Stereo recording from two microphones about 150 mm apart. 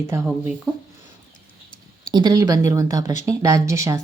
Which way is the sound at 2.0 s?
30° right (ahead or behind).